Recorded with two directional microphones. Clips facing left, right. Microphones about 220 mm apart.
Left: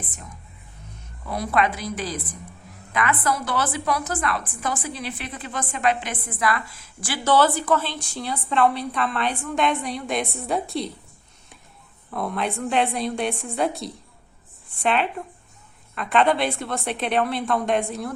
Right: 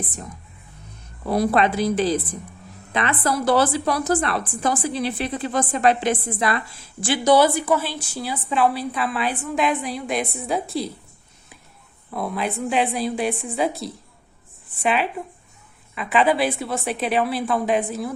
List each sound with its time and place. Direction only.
1.2 s a woman's voice: 35° right (ahead or behind)
7.3 s a woman's voice: 10° right (ahead or behind)
12.1 s a woman's voice: 5° right (ahead or behind)